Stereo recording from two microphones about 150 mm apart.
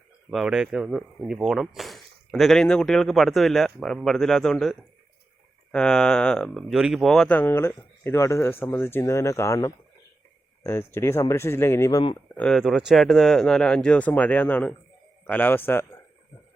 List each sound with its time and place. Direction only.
0.3 s speech: 5° right (ahead or behind); by 12.1 s 25° left (ahead or behind)
12.3 s speech: 5° left (ahead or behind)